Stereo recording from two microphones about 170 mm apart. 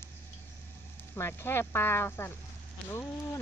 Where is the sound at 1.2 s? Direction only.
15° left (ahead or behind).